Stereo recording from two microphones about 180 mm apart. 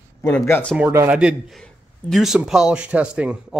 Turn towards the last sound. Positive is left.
turn(degrees=-5)  # may be behind; listen again after turning